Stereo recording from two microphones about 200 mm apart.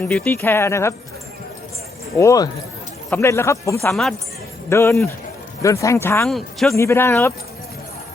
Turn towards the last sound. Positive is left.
turn(degrees=10)  # may be behind; listen again after turning